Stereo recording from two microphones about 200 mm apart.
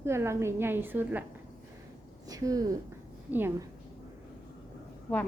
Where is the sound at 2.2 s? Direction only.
15° right (ahead or behind).